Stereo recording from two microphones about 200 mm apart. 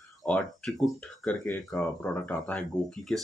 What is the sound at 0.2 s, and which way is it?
Speech, centre (ahead or behind).